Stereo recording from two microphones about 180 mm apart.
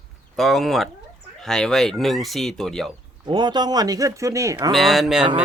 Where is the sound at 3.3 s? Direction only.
25° right (ahead or behind).